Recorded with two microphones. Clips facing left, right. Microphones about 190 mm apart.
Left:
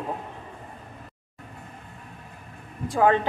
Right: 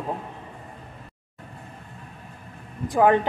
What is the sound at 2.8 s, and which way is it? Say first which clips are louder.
Speech: right 2 dB; 20° right (ahead or behind).